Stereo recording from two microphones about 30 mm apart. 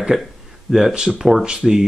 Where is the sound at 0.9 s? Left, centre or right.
Right.